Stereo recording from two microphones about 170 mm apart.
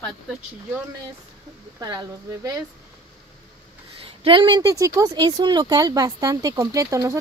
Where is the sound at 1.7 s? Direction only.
20° right (ahead or behind).